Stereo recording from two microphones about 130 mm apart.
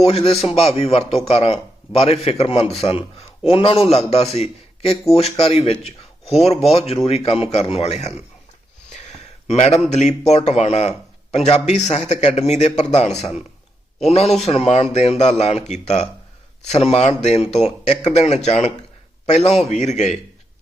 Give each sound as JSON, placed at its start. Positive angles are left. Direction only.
{"t": 0.0, "sound": "a man's voice", "side_deg": 50}
{"t": 8.9, "sound": "a sound", "side_deg": 60}
{"t": 9.9, "sound": "a man's voice", "side_deg": 60}